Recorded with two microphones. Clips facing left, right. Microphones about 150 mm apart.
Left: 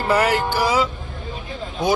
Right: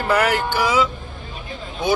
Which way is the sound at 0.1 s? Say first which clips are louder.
Even; 30° left (ahead or behind).